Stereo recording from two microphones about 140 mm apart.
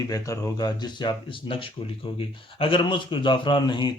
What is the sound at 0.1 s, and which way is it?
Speech, 25° left (ahead or behind).